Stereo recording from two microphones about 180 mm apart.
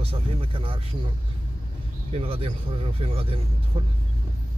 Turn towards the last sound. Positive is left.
turn(degrees=-30)  # may be behind; listen again after turning